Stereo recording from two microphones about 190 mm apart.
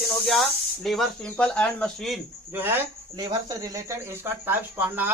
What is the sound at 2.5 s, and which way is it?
Speech, 10° right (ahead or behind).